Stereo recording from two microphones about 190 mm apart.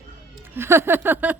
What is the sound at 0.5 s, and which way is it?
Speech, 15° right (ahead or behind).